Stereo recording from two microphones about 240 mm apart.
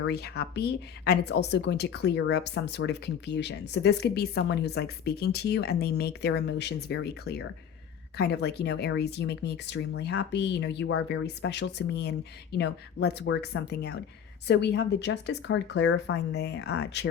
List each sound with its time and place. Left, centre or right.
0.1 s speech: left